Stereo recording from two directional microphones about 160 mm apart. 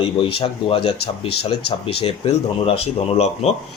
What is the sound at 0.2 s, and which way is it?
Speech, 35° left (ahead or behind).